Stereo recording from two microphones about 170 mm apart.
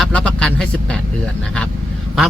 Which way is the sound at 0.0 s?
5° left (ahead or behind).